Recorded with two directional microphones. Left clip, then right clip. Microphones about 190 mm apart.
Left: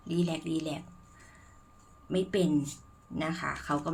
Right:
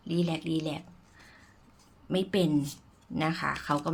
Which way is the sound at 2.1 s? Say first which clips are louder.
Right 1 dB; 20° right (ahead or behind).